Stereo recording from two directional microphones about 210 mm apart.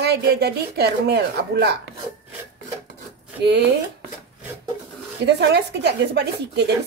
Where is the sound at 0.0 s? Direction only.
50° right (ahead or behind).